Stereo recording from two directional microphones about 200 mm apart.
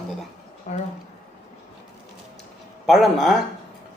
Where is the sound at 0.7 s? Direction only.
35° left (ahead or behind).